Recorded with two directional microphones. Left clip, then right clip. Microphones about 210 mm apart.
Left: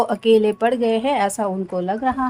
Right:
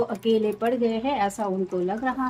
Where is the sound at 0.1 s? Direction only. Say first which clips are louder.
Left 8 dB; 55° left (ahead or behind).